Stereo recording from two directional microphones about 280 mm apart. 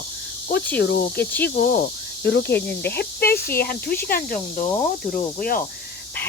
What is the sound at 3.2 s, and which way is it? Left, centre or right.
Speech, centre.